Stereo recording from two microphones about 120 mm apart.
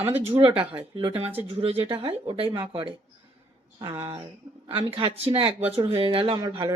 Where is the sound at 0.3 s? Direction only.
50° right (ahead or behind).